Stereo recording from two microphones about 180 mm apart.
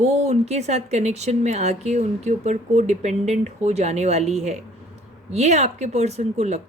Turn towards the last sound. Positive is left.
turn(degrees=-40)  # may be behind; listen again after turning